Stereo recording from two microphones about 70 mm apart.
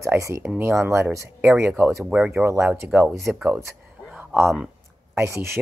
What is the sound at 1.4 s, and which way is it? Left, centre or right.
Speech, right.